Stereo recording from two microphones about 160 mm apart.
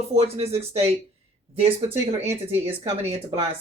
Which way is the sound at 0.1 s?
40° right (ahead or behind).